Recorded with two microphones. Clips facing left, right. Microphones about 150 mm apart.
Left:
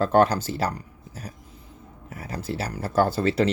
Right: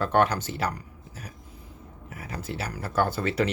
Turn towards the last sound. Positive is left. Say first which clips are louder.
# left 4 dB
turn(degrees=30)  # may be behind; listen again after turning